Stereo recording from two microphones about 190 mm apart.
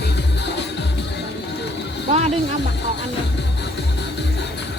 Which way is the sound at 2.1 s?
35° right (ahead or behind).